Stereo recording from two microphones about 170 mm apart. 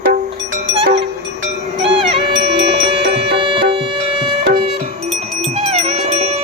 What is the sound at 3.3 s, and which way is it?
Music, 30° right (ahead or behind).